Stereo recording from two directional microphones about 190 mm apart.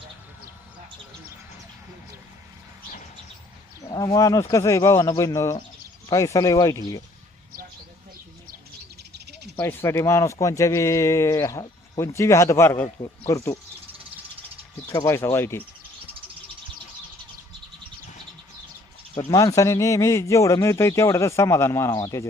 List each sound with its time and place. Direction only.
3.8 s a man's voice: 20° left (ahead or behind)
9.6 s a man's voice: 10° left (ahead or behind)
14.9 s a man's voice: 15° left (ahead or behind)
19.1 s a man's voice: 20° left (ahead or behind)